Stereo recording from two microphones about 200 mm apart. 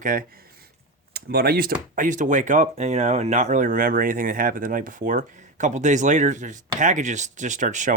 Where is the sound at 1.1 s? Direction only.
50° right (ahead or behind).